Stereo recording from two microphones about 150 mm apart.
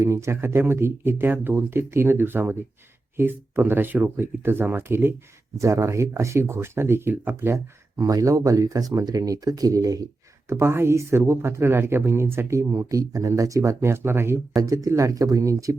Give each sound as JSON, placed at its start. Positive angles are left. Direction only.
{"t": 0.0, "sound": "speech", "side_deg": -20}